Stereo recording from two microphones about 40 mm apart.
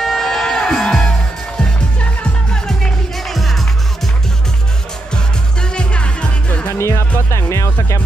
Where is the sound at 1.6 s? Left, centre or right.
Left.